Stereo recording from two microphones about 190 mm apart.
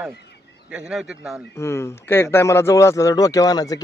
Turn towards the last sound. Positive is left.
turn(degrees=20)  # may be behind; listen again after turning